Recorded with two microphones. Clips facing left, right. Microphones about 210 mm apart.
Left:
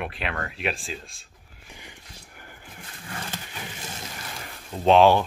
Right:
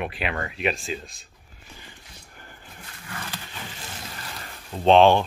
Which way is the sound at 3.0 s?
30° left (ahead or behind).